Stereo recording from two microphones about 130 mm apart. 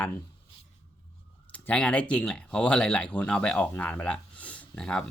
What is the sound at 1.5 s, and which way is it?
Speech, 10° left (ahead or behind).